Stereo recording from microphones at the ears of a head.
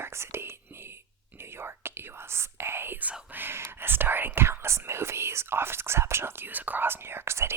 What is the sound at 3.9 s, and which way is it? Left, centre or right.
Speech, right.